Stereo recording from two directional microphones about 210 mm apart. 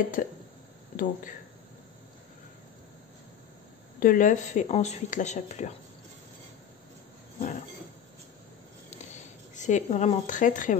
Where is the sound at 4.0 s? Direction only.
40° left (ahead or behind).